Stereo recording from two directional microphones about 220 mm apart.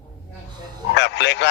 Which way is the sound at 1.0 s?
50° left (ahead or behind).